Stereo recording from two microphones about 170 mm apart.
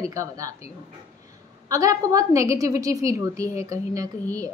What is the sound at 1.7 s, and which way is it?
A woman's voice, 20° right (ahead or behind).